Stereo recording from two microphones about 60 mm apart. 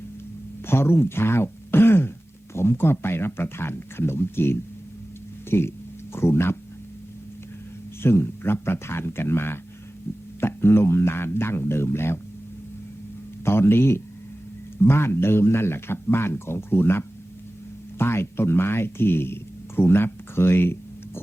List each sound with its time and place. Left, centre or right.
0.7 s a man's voice: left
8.0 s a man's voice: left
13.4 s a sound: left
14.8 s a man's voice: left